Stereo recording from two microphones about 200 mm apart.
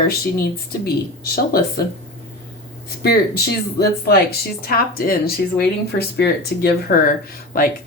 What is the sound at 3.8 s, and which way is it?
Speech, 50° left (ahead or behind).